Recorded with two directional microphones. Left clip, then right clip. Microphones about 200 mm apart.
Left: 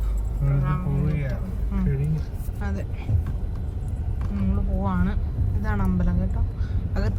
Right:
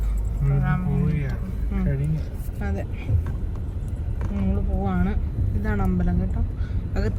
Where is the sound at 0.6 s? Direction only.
5° left (ahead or behind).